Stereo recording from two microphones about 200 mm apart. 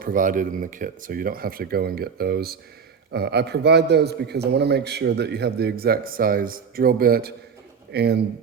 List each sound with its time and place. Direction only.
0.0 s a man's voice: 45° right (ahead or behind)